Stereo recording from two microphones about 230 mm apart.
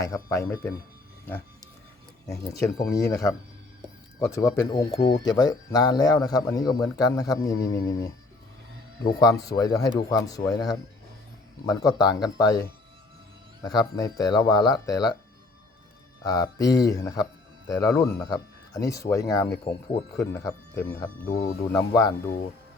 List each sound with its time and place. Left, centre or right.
0.0 s speech: centre
2.3 s speech: centre
9.1 s speech: centre
11.6 s speech: centre
13.6 s speech: centre
16.2 s speech: centre
19.7 s speech: left
20.1 s speech: centre
21.2 s speech: left
21.7 s speech: centre